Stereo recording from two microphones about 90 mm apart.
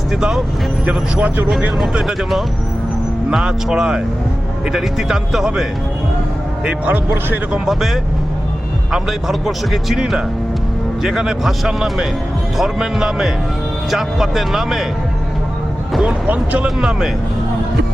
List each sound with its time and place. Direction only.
0.1 s speech: 5° right (ahead or behind)
6.7 s speech: 20° right (ahead or behind)
7.6 s speech: 5° right (ahead or behind)
15.9 s speech: centre (ahead or behind)
16.2 s speech: 15° right (ahead or behind)
16.6 s speech: 5° right (ahead or behind)